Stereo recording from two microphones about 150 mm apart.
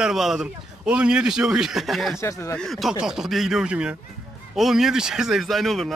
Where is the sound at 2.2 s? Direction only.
20° left (ahead or behind).